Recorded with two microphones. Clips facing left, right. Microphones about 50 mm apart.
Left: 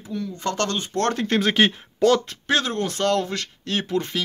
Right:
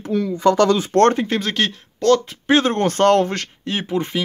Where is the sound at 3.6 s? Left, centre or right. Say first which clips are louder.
Right 1 dB; right.